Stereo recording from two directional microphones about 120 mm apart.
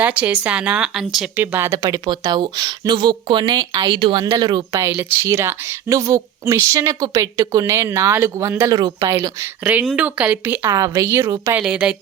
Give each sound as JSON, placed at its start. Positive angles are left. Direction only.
{"t": 0.0, "sound": "speech", "side_deg": -10}
{"t": 1.4, "sound": "a woman's voice", "side_deg": -20}
{"t": 4.9, "sound": "speech", "side_deg": -20}
{"t": 8.7, "sound": "a woman's voice", "side_deg": -35}
{"t": 9.9, "sound": "speech", "side_deg": -10}
{"t": 10.8, "sound": "speech", "side_deg": -30}
{"t": 11.5, "sound": "speech", "side_deg": -10}